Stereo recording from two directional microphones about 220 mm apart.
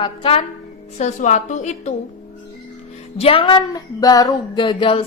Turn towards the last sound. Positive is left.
turn(degrees=20)  # may be behind; listen again after turning